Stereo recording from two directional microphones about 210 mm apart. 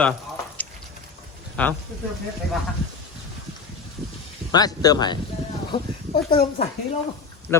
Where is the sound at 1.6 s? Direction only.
10° left (ahead or behind).